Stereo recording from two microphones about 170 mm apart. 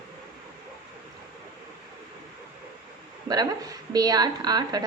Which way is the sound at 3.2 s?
25° right (ahead or behind).